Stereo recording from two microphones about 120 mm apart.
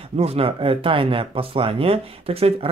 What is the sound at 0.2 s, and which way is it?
Speech, 55° right (ahead or behind).